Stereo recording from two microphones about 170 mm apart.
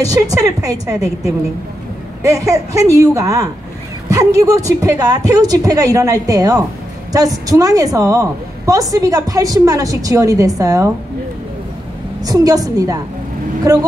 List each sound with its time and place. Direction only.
0.0 s a woman's voice: 20° right (ahead or behind)
12.2 s a woman's voice: 20° right (ahead or behind)